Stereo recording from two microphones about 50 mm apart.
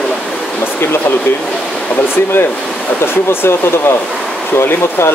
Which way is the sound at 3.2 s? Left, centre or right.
Left.